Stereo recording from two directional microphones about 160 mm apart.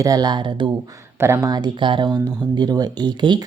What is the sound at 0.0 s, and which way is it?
Speech, 25° right (ahead or behind).